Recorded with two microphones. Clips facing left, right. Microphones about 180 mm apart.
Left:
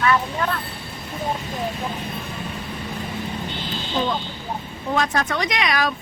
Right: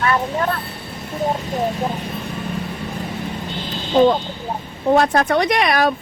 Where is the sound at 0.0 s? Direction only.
40° right (ahead or behind).